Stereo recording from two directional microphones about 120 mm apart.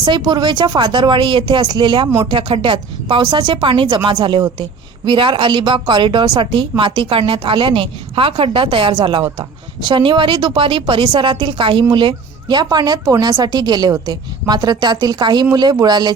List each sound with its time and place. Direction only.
0.0 s a woman's voice: 40° right (ahead or behind)